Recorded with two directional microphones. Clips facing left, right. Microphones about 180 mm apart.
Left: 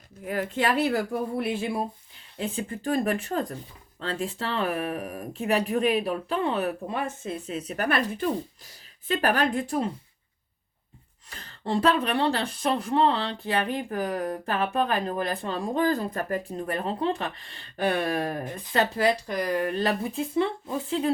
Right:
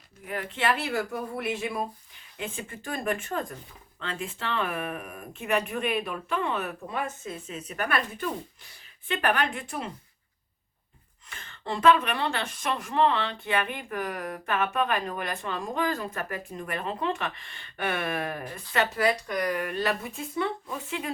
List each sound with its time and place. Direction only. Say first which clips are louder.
0.3 s a woman's voice: left 3 dB; 40° left (ahead or behind)
11.3 s a woman's voice: left 5 dB; 35° left (ahead or behind)
18.4 s speech: left 3 dB; 20° left (ahead or behind)
18.7 s a woman's voice: left 2 dB; 30° left (ahead or behind)